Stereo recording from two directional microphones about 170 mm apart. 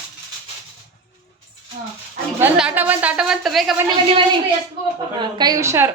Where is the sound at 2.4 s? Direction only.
10° right (ahead or behind).